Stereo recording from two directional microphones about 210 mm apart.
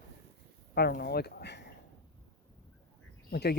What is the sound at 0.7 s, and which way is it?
Speech, 45° left (ahead or behind).